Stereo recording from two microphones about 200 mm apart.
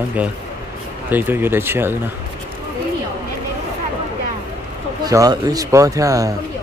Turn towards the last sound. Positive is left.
turn(degrees=-15)  # may be behind; listen again after turning